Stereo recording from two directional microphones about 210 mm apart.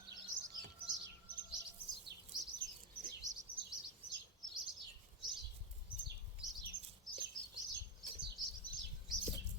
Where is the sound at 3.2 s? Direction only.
35° right (ahead or behind).